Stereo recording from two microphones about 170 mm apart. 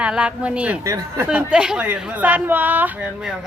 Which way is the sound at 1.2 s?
5° right (ahead or behind).